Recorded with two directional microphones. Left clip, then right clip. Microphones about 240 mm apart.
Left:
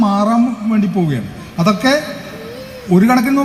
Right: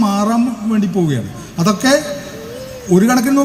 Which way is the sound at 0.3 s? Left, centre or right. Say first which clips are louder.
Left 2 dB; right.